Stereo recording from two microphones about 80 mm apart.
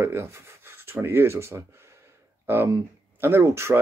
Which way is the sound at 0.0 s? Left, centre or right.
Right.